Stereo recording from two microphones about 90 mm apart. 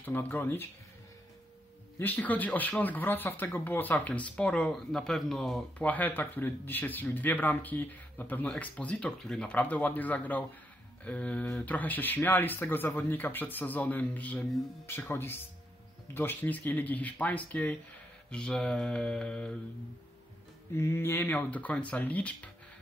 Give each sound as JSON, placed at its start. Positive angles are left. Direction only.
{"t": 0.0, "sound": "speech", "side_deg": 20}
{"t": 2.0, "sound": "speech", "side_deg": 20}
{"t": 5.8, "sound": "speech", "side_deg": 20}
{"t": 20.7, "sound": "speech", "side_deg": 30}